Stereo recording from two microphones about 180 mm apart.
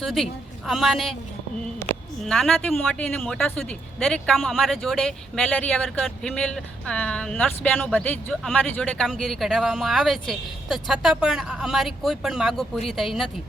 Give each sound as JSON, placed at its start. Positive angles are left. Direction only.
{"t": 0.0, "sound": "speech", "side_deg": 0}